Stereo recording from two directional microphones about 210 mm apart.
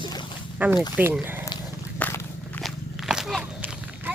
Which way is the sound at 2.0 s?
10° left (ahead or behind).